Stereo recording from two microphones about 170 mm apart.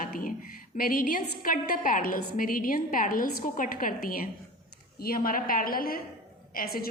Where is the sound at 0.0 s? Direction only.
55° left (ahead or behind).